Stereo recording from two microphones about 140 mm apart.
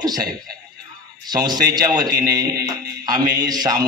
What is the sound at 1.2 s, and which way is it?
A man's voice, 30° right (ahead or behind).